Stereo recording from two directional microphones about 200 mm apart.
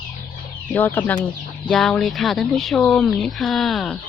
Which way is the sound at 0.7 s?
10° left (ahead or behind).